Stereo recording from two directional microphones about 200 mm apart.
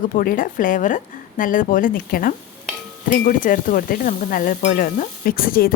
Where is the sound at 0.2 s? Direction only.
45° left (ahead or behind).